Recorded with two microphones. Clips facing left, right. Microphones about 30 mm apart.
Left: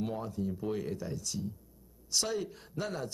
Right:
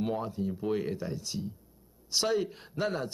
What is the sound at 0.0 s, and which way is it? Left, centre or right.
A man's voice, right.